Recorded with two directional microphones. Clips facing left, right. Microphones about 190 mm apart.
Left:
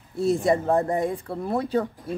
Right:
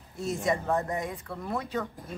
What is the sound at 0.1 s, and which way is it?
Speech, 30° left (ahead or behind).